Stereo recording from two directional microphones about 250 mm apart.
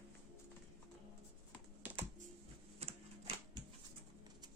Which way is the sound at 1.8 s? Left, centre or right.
Centre.